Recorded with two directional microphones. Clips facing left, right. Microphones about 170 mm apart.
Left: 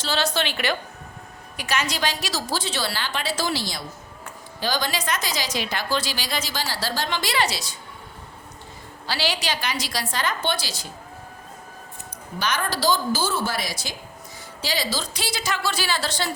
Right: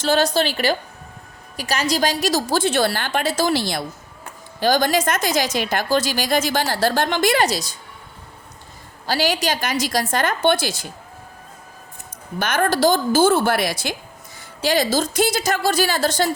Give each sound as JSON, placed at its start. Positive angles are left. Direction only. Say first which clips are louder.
{"t": 0.0, "sound": "a woman's voice", "louder": "right 7 dB", "side_deg": -50}
{"t": 0.3, "sound": "a woman's voice", "louder": "right 5 dB", "side_deg": -35}
{"t": 4.6, "sound": "a woman's voice", "louder": "right 8 dB", "side_deg": -50}
{"t": 9.0, "sound": "a woman's voice", "louder": "right 6 dB", "side_deg": -45}
{"t": 12.4, "sound": "a woman's voice", "louder": "right 7 dB", "side_deg": -50}